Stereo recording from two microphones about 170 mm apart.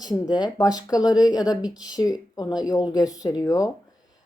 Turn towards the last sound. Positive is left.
turn(degrees=20)  # may be behind; listen again after turning